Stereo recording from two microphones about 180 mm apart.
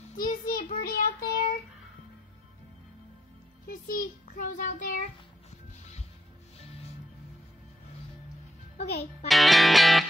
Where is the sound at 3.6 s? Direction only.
50° left (ahead or behind).